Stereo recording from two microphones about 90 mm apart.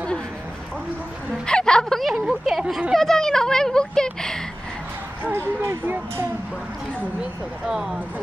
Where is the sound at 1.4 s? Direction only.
10° left (ahead or behind).